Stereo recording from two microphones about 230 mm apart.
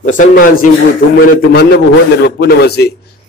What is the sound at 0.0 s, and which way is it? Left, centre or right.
A man's voice, left.